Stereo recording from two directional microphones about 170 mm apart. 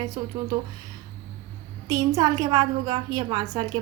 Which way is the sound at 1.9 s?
20° right (ahead or behind).